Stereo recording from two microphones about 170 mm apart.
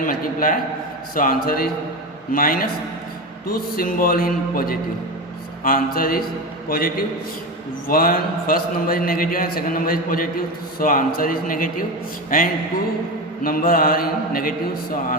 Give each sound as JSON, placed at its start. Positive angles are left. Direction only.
{"t": 0.0, "sound": "a man's voice", "side_deg": 55}
{"t": 13.4, "sound": "a man's voice", "side_deg": 55}